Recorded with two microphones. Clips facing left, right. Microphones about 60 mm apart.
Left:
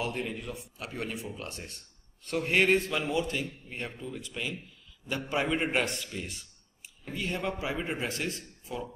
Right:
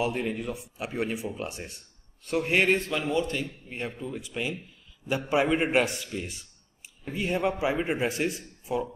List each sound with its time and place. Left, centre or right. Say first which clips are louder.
0.0 s a man's voice: right 5 dB; centre
3.4 s a man's voice: right 3 dB; centre
7.2 s speech: right 6 dB; centre